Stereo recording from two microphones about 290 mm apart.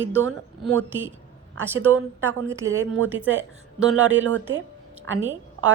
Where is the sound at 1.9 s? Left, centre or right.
Right.